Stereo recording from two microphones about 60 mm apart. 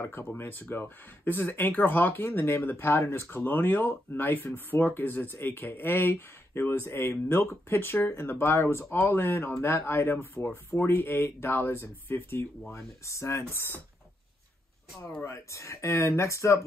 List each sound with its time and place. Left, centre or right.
0.0 s speech: left
12.7 s speech: left
15.2 s speech: left